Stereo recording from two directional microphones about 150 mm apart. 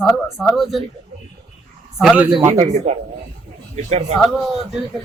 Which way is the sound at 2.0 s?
10° right (ahead or behind).